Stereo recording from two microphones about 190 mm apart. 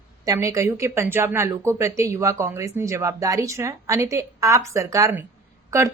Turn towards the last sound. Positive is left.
turn(degrees=-15)  # may be behind; listen again after turning